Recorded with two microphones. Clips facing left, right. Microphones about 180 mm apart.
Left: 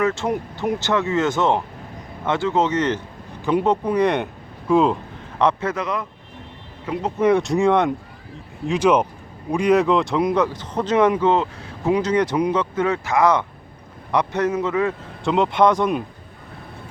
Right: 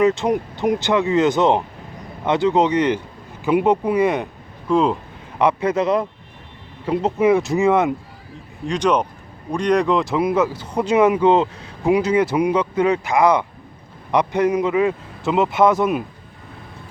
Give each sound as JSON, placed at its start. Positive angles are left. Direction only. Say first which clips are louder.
{"t": 0.0, "sound": "speech", "louder": "right 4 dB", "side_deg": -15}
{"t": 5.4, "sound": "speech", "louder": "right 2 dB", "side_deg": -10}
{"t": 5.8, "sound": "speech", "louder": "right 7 dB", "side_deg": -30}
{"t": 7.2, "sound": "speech", "louder": "even", "side_deg": -5}
{"t": 15.2, "sound": "speech", "louder": "right 1 dB", "side_deg": -5}